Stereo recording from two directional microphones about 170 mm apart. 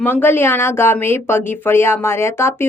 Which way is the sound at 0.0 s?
10° left (ahead or behind).